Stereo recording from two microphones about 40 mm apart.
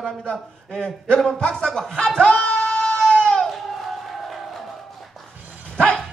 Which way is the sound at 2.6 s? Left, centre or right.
Centre.